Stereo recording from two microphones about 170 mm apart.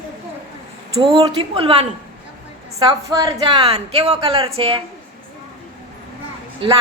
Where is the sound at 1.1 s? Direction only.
30° right (ahead or behind).